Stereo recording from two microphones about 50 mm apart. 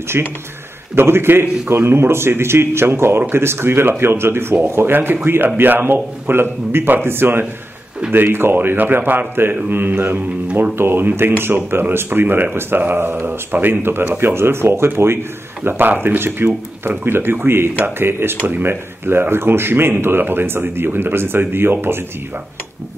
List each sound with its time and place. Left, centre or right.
0.1 s a man's voice: right
4.9 s a man's voice: right
16.0 s speech: right